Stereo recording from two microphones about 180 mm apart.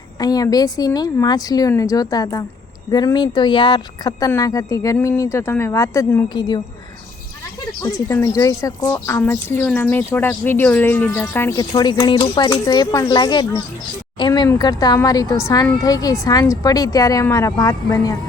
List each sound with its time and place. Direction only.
0.2 s speech: 20° left (ahead or behind)
7.8 s speech: 20° left (ahead or behind)